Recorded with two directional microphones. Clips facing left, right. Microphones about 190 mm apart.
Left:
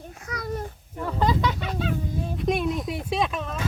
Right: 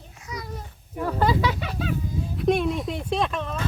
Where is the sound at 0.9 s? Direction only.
5° right (ahead or behind).